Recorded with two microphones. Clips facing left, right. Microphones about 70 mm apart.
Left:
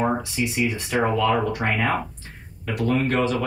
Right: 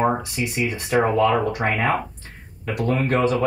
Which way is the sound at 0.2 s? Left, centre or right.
Right.